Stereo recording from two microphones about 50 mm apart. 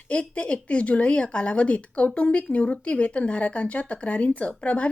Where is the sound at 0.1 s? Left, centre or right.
Left.